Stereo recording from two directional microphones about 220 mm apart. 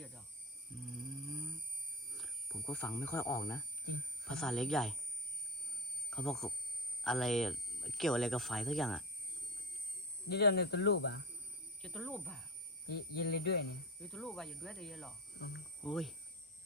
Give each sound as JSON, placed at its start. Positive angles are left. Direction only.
{"t": 0.9, "sound": "a sound", "side_deg": 0}
{"t": 2.1, "sound": "speech", "side_deg": 0}
{"t": 6.1, "sound": "speech", "side_deg": 0}
{"t": 10.2, "sound": "speech", "side_deg": 45}
{"t": 11.8, "sound": "speech", "side_deg": 5}
{"t": 12.9, "sound": "speech", "side_deg": 45}
{"t": 14.0, "sound": "speech", "side_deg": 5}